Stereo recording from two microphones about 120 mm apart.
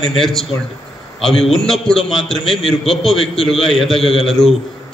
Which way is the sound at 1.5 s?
Centre (ahead or behind).